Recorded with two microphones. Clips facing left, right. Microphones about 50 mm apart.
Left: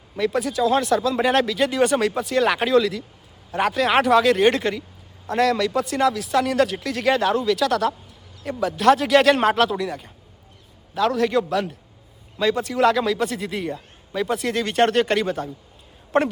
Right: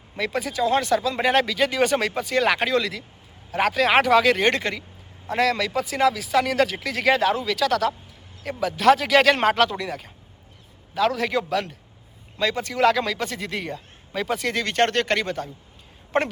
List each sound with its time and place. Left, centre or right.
0.2 s speech: centre